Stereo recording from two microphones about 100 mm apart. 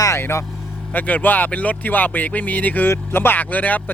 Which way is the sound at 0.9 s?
15° left (ahead or behind).